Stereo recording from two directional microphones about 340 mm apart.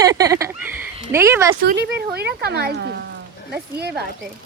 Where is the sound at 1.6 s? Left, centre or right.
Right.